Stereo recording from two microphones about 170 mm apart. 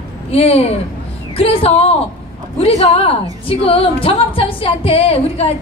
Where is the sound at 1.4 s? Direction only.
35° left (ahead or behind).